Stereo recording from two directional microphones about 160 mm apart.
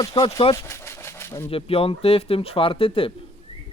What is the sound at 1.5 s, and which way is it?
Speech, 35° left (ahead or behind).